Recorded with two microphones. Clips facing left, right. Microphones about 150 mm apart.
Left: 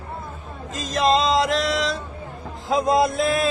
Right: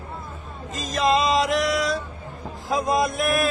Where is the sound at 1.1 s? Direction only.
25° left (ahead or behind).